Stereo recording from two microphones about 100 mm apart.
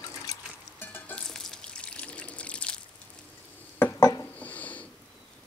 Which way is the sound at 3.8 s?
25° left (ahead or behind).